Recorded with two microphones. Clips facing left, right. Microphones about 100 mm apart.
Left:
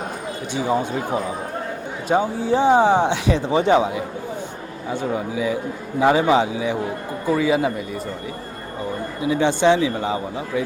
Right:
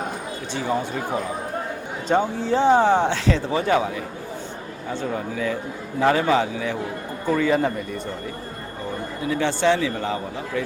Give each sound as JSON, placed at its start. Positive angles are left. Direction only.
{"t": 0.5, "sound": "speech", "side_deg": 15}
{"t": 9.2, "sound": "speech", "side_deg": 15}